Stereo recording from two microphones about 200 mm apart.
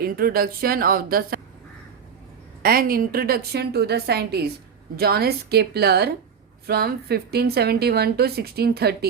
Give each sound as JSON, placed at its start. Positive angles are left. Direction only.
{"t": 0.0, "sound": "a woman's voice", "side_deg": -50}
{"t": 2.6, "sound": "a woman's voice", "side_deg": -45}